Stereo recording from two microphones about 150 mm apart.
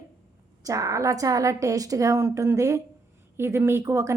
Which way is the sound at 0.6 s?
20° right (ahead or behind).